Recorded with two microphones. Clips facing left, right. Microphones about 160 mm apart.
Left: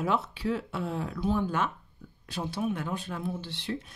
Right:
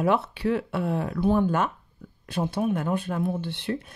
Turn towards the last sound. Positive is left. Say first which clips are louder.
# right 5 dB
turn(degrees=-55)  # may be behind; listen again after turning